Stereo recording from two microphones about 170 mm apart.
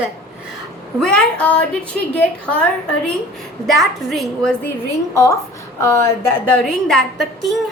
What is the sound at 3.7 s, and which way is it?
Speech, centre (ahead or behind).